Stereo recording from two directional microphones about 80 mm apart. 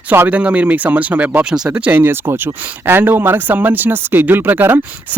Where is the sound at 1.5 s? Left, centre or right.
Centre.